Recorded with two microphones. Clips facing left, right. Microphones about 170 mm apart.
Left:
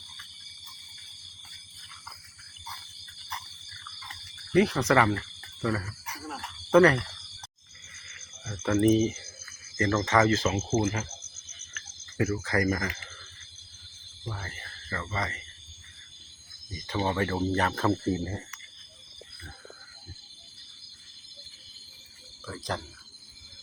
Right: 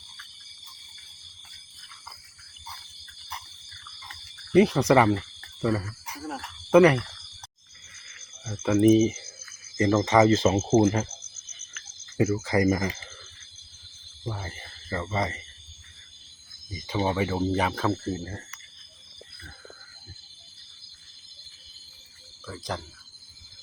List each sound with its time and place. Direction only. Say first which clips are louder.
4.5 s speech: right 4 dB; 20° right (ahead or behind)
8.4 s speech: right 3 dB; 5° right (ahead or behind)
9.7 s speech: right 4 dB; 15° right (ahead or behind)
10.7 s speech: right 8 dB; 40° right (ahead or behind)
12.1 s speech: right 4 dB; 20° right (ahead or behind)
14.3 s speech: right 4 dB; 20° right (ahead or behind)
16.8 s speech: right 2 dB; 10° right (ahead or behind)
17.9 s speech: left 3 dB; 10° left (ahead or behind)
22.4 s a sound: even; centre (ahead or behind)